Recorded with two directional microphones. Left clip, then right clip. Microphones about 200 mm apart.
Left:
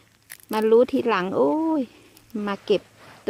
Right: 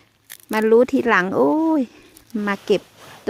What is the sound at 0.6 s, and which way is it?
A woman's voice, 30° right (ahead or behind).